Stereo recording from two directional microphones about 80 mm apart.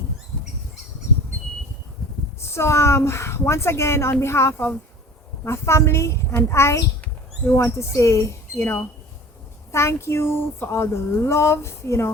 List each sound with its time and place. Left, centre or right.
2.4 s speech: left